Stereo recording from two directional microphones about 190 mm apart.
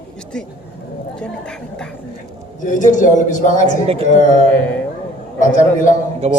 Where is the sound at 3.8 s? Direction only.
30° right (ahead or behind).